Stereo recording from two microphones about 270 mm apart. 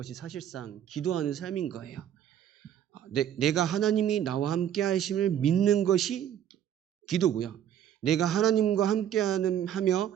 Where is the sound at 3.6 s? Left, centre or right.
Left.